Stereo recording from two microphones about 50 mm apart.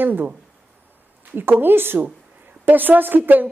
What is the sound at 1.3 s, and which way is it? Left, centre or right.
A woman's voice, right.